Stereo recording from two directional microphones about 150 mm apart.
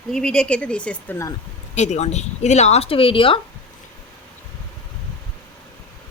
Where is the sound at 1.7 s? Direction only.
50° left (ahead or behind).